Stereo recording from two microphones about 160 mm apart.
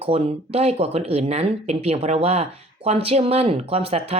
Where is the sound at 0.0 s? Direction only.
40° right (ahead or behind).